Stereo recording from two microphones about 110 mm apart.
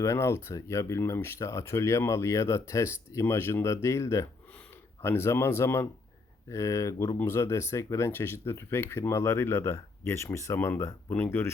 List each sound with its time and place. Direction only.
0.0 s speech: 25° left (ahead or behind)